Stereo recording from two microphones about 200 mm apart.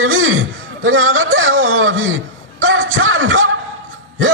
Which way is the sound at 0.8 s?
85° right.